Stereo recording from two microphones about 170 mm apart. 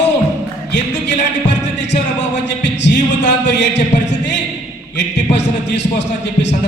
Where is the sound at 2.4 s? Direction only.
90° left.